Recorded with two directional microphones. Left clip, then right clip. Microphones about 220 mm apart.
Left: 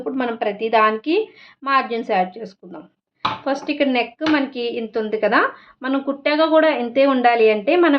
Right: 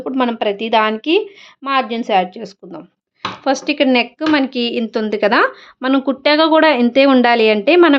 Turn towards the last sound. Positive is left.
turn(degrees=-50)  # may be behind; listen again after turning